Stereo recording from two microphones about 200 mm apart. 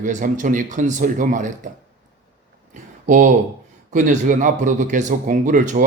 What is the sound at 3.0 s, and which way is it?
Speech, 40° right (ahead or behind).